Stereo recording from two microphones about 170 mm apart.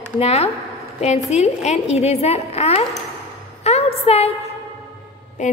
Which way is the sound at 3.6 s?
35° left (ahead or behind).